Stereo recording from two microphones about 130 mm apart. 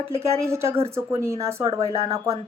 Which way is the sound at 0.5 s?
20° right (ahead or behind).